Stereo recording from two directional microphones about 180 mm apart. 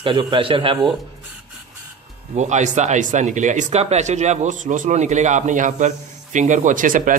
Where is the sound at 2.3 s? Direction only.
40° right (ahead or behind).